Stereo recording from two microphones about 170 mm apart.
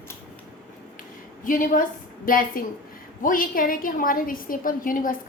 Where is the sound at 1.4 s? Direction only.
55° left (ahead or behind).